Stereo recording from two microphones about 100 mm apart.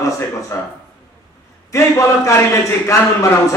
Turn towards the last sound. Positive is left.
turn(degrees=30)  # may be behind; listen again after turning